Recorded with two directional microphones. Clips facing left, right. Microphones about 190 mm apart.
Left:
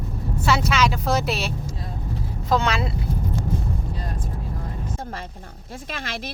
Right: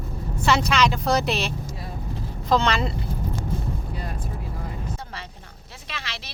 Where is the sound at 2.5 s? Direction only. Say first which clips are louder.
Right 1 dB; 5° left (ahead or behind).